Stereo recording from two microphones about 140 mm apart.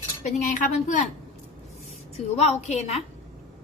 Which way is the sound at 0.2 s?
65° left (ahead or behind).